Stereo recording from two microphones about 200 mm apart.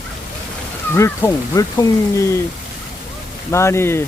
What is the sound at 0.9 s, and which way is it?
Speech, 15° left (ahead or behind).